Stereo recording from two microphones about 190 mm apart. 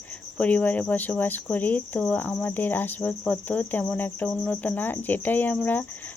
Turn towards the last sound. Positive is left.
turn(degrees=10)  # may be behind; listen again after turning